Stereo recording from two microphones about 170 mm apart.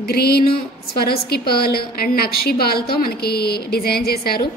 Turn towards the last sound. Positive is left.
turn(degrees=65)  # may be behind; listen again after turning